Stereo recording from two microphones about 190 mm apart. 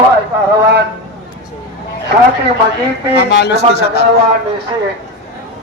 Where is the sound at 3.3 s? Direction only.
60° left (ahead or behind).